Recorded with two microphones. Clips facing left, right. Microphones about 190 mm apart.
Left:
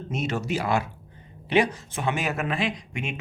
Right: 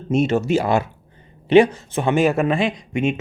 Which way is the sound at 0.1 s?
25° right (ahead or behind).